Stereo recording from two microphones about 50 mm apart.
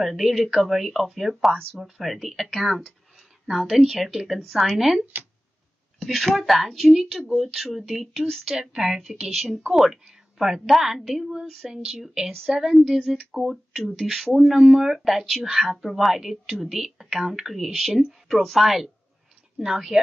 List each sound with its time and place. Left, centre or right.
0.0 s speech: centre
8.5 s speech: centre
12.3 s speech: centre
12.5 s speech: centre